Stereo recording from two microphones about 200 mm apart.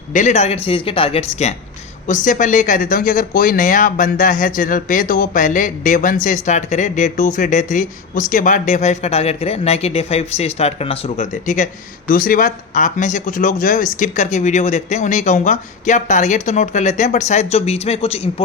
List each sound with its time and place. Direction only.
0.1 s speech: 40° left (ahead or behind)